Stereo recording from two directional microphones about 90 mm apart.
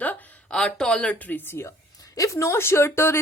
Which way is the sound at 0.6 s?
10° left (ahead or behind).